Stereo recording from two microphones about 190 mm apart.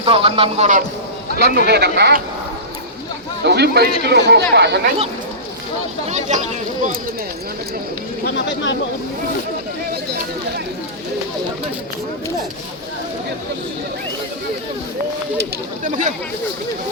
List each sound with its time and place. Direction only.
0.0 s speech: 30° right (ahead or behind)
1.4 s speech: 55° right (ahead or behind)
3.4 s speech: 60° right (ahead or behind)
6.1 s speech: 35° right (ahead or behind)
8.2 s speech: 70° left (ahead or behind)
15.8 s speech: 40° right (ahead or behind)